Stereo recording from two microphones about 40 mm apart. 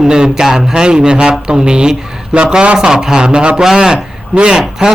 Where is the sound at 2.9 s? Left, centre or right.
Centre.